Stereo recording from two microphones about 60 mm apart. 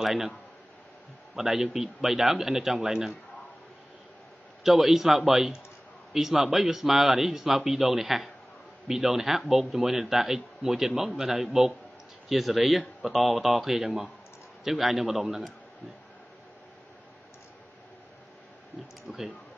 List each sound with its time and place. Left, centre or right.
0.0 s speech: centre
1.3 s a man's voice: centre
4.6 s a man's voice: centre
19.1 s a man's voice: centre